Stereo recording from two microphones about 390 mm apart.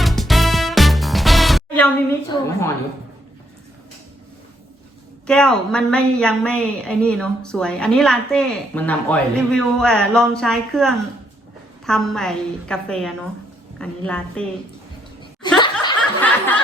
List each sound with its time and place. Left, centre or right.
0.0 s music: centre
5.2 s a woman's voice: centre
15.5 s snicker: centre